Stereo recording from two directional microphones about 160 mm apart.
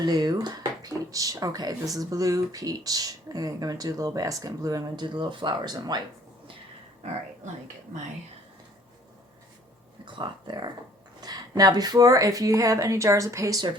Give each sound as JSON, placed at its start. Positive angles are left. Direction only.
{"t": 0.0, "sound": "speech", "side_deg": -25}
{"t": 7.0, "sound": "speech", "side_deg": -45}
{"t": 10.1, "sound": "speech", "side_deg": -30}